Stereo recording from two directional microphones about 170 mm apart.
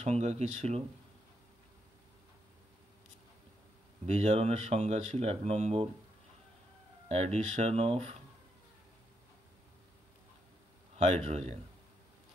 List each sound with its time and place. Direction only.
0.0 s speech: 40° right (ahead or behind)
4.0 s speech: 40° right (ahead or behind)
7.1 s speech: 40° right (ahead or behind)
11.0 s speech: 40° right (ahead or behind)